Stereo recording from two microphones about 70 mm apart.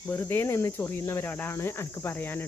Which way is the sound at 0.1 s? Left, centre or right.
Left.